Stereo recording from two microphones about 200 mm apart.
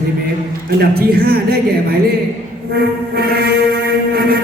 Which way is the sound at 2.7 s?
50° right (ahead or behind).